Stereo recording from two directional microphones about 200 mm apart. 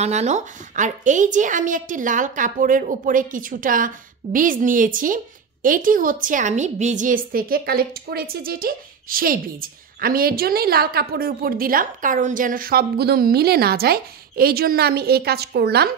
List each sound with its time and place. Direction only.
0.0 s a woman's voice: 35° right (ahead or behind); by 15.9 s 55° right (ahead or behind)